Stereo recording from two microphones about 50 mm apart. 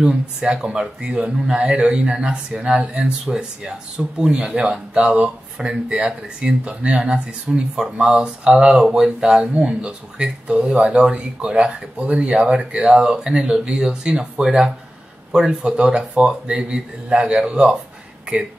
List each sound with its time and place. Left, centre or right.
0.0 s speech: centre
3.3 s speech: centre